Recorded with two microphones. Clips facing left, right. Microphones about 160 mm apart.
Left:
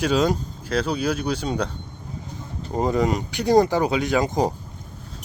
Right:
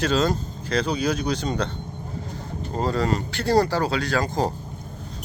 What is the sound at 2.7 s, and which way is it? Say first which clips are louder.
Speech: left 2 dB; 15° left (ahead or behind).